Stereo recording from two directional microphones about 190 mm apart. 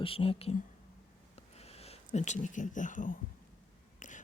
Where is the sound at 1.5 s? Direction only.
35° left (ahead or behind).